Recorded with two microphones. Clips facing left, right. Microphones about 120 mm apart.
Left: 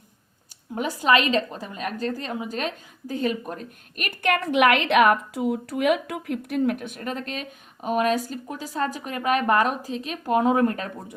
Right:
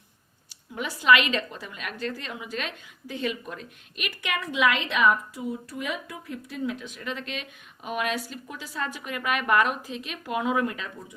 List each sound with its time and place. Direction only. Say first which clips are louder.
0.8 s a woman's voice: left 1 dB; 40° left (ahead or behind)